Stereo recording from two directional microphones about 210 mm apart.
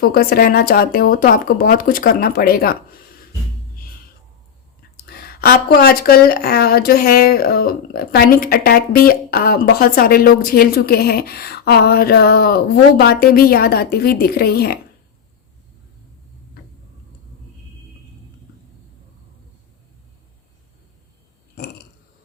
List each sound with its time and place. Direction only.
0.0 s speech: 45° left (ahead or behind)
5.0 s speech: 45° left (ahead or behind)